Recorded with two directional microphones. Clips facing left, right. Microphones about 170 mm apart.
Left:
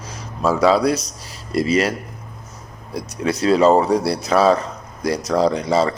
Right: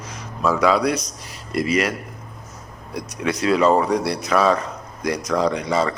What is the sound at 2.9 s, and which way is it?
Speech, 30° left (ahead or behind).